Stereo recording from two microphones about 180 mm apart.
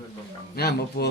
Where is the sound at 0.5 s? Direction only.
60° left (ahead or behind).